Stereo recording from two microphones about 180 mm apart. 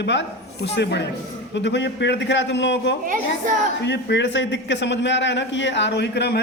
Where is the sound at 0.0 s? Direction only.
80° left.